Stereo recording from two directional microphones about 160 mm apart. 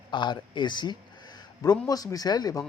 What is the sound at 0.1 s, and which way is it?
Speech, 30° left (ahead or behind).